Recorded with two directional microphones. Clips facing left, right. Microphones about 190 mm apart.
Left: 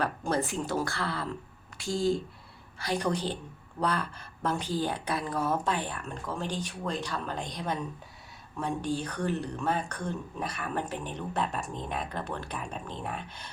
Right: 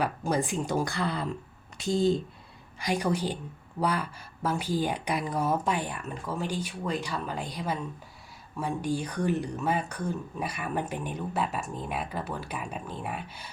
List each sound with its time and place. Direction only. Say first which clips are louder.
0.0 s speech: right 1 dB; 15° right (ahead or behind)